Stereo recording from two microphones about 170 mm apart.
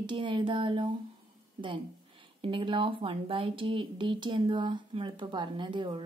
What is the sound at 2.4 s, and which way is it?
Speech, 30° right (ahead or behind).